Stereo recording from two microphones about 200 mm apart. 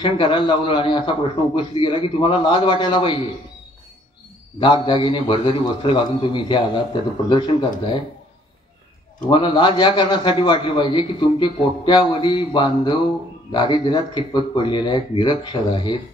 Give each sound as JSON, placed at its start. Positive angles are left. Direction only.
{"t": 0.0, "sound": "a man's voice", "side_deg": 25}
{"t": 4.6, "sound": "a man's voice", "side_deg": 25}
{"t": 9.3, "sound": "a man's voice", "side_deg": 25}